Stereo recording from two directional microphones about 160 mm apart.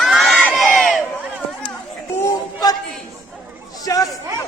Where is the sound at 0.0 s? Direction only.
Centre (ahead or behind).